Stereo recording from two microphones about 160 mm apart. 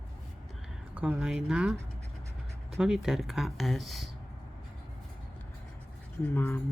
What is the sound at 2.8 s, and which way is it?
Speech, 5° right (ahead or behind).